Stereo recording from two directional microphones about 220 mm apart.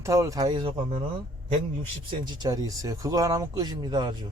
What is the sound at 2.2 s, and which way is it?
Speech, 20° right (ahead or behind).